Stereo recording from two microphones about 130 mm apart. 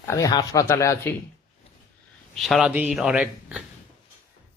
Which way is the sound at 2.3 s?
Centre (ahead or behind).